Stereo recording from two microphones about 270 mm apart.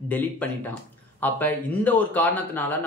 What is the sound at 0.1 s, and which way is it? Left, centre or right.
Speech, centre.